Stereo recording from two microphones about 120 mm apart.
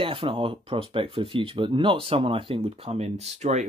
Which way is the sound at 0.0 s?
50° right (ahead or behind).